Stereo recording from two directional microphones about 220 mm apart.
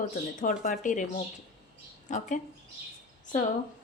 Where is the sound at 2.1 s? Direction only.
35° left (ahead or behind).